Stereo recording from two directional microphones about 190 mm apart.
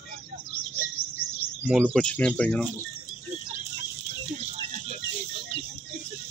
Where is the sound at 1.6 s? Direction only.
5° right (ahead or behind).